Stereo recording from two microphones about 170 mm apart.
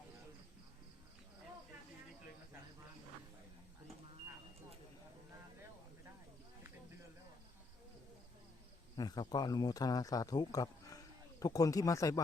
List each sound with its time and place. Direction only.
9.0 s speech: 25° left (ahead or behind)